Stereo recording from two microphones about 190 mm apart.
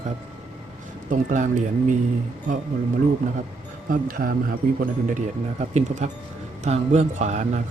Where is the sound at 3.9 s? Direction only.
50° right (ahead or behind).